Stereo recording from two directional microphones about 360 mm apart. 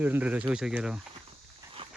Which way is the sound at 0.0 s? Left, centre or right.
Centre.